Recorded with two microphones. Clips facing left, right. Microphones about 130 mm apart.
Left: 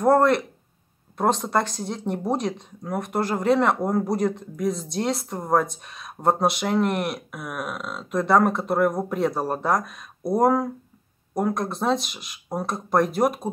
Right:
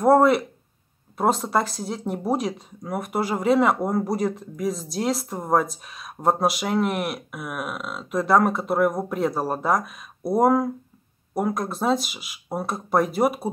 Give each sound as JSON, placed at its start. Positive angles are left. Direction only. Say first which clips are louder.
{"t": 0.0, "sound": "speech", "louder": "right 1 dB", "side_deg": -5}